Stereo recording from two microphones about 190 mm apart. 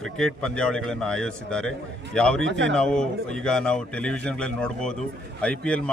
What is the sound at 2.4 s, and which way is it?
Speech, 70° right (ahead or behind).